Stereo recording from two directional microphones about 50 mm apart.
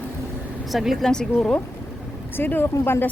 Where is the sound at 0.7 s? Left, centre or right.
Centre.